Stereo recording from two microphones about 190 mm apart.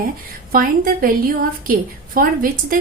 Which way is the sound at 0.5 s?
50° right (ahead or behind).